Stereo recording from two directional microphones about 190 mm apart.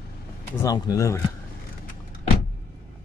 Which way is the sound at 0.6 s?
20° left (ahead or behind).